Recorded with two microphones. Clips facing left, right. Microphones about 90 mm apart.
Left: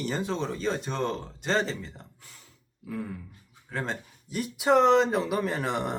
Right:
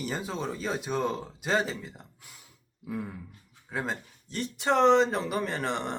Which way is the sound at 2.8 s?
20° right (ahead or behind).